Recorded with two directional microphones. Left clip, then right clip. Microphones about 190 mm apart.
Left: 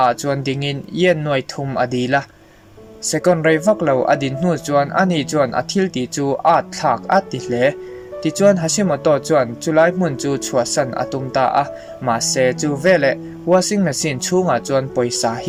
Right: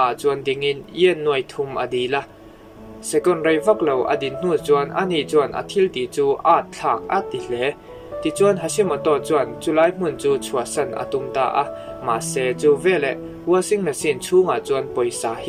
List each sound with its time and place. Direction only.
0.0 s speech: 50° left (ahead or behind)